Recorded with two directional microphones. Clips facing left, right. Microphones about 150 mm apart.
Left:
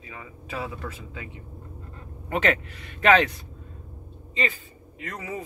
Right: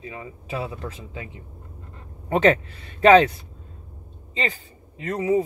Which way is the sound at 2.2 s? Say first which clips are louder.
Right 6 dB; 30° right (ahead or behind).